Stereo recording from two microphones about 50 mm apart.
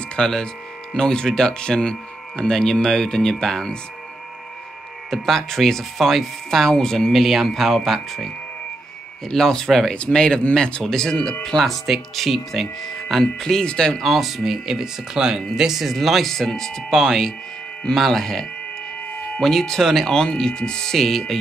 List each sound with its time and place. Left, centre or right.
0.1 s speech: centre
5.1 s speech: centre
7.1 s speech: centre
9.3 s speech: centre
14.0 s speech: centre